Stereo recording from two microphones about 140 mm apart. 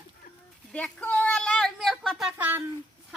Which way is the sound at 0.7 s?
10° left (ahead or behind).